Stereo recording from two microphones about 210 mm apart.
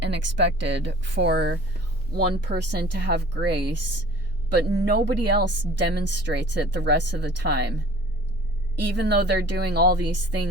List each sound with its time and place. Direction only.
0.0 s a woman's voice: 55° right (ahead or behind)
4.5 s a woman's voice: 50° right (ahead or behind)
9.0 s speech: 55° right (ahead or behind)